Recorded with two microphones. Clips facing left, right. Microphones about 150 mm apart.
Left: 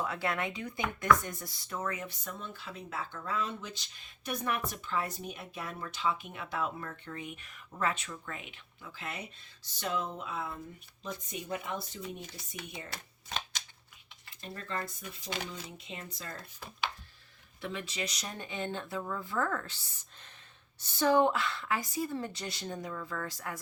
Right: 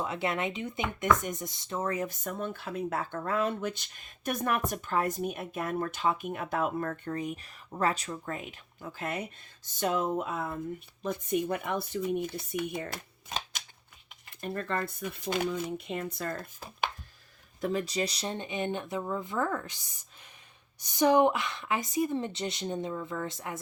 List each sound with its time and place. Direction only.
0.0 s speech: 20° right (ahead or behind); by 13.0 s 50° right (ahead or behind)
14.4 s speech: 55° right (ahead or behind)
17.6 s a woman's voice: 40° right (ahead or behind); by 23.6 s 20° right (ahead or behind)